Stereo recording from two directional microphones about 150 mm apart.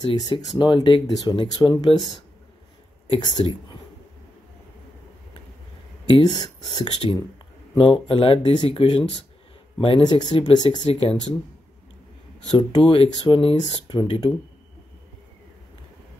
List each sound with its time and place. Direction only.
0.0 s speech: 30° left (ahead or behind)
3.1 s speech: 30° left (ahead or behind)
6.2 s speech: 30° left (ahead or behind)
12.4 s speech: 30° left (ahead or behind)